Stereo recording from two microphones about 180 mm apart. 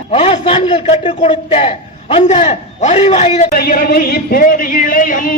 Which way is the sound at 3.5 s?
55° left (ahead or behind).